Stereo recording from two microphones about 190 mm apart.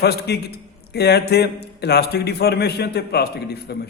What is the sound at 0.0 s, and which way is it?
A man's voice, 60° left (ahead or behind).